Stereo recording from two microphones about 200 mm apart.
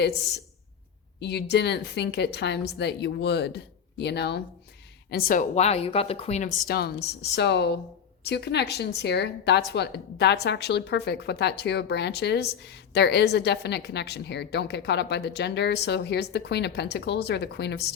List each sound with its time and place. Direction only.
1.2 s a woman's voice: 55° left (ahead or behind)
5.1 s a woman's voice: 45° left (ahead or behind)
6.7 s a woman's voice: 50° left (ahead or behind)